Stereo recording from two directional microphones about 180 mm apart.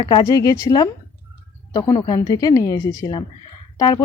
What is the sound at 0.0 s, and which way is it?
Speech, 25° left (ahead or behind).